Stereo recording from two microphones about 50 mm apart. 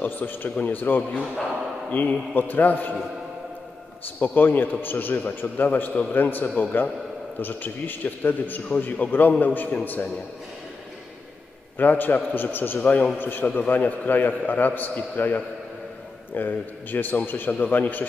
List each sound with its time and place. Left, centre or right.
0.0 s a man's voice: left
4.2 s a man's voice: left
11.8 s a man's voice: left
12.8 s a man's voice: left